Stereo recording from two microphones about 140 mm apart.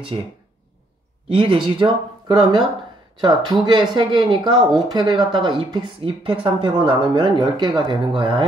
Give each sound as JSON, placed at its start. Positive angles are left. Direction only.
{"t": 1.3, "sound": "speech", "side_deg": -35}